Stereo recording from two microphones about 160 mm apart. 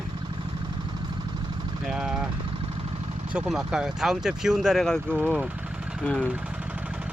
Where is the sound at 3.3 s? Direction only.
5° right (ahead or behind).